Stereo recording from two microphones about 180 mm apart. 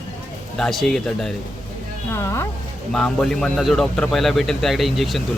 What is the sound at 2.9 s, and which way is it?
A man's voice, 5° left (ahead or behind).